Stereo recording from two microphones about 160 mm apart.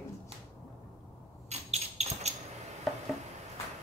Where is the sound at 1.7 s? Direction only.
40° right (ahead or behind).